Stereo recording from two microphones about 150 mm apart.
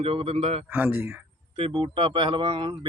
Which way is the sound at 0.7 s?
15° right (ahead or behind).